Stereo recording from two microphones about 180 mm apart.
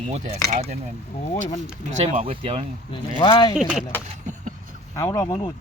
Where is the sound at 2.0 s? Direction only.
30° right (ahead or behind).